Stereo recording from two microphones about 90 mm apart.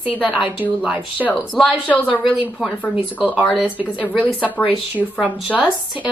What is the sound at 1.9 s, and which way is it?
Speech, 15° left (ahead or behind).